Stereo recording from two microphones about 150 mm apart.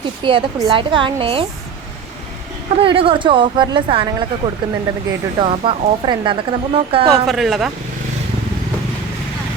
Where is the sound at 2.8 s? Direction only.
35° right (ahead or behind).